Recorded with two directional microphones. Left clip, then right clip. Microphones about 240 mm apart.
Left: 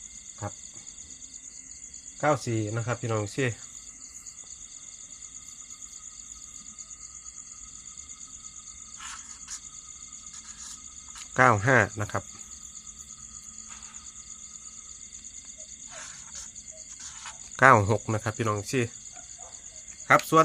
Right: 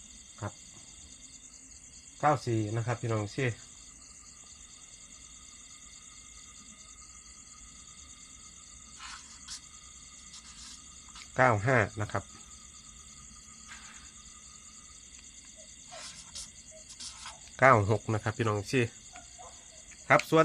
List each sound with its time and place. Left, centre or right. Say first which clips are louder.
2.2 s speech: left 2 dB; left
9.0 s a sound: left 3 dB; centre
11.3 s speech: left 5 dB; left
16.0 s cricket: left 1 dB; centre
17.6 s speech: left 4 dB; left; by 18.9 s centre
20.1 s speech: left 4 dB; left